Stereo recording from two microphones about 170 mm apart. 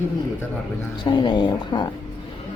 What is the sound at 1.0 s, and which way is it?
Speech, 25° left (ahead or behind).